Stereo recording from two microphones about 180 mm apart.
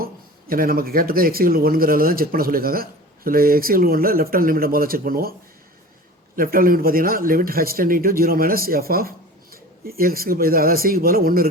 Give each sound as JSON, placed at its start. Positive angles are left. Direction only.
{"t": 0.0, "sound": "speech", "side_deg": -55}
{"t": 6.3, "sound": "speech", "side_deg": -55}